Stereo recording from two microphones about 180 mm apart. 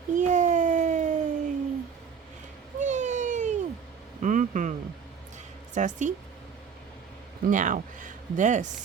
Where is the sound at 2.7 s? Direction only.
40° right (ahead or behind).